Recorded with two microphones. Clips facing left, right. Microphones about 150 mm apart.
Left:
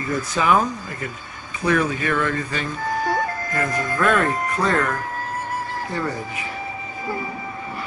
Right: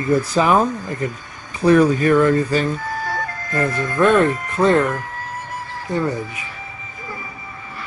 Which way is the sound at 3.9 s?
25° right (ahead or behind).